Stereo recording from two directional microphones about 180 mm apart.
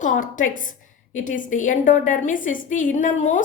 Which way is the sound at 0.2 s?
50° left (ahead or behind).